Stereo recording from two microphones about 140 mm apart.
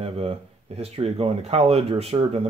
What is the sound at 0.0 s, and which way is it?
Speech, 45° right (ahead or behind).